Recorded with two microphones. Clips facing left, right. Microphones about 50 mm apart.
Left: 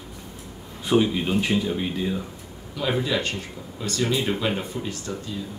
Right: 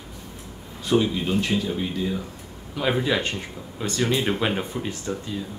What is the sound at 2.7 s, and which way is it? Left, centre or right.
Speech, right.